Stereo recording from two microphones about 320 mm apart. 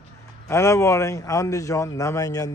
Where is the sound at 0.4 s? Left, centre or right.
Centre.